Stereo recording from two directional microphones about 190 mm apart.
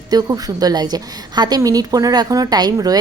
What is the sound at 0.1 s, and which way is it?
A woman's voice, 20° right (ahead or behind).